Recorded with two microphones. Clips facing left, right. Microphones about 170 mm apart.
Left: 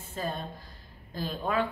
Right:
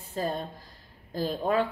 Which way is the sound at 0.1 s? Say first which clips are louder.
Right 4 dB; 35° right (ahead or behind).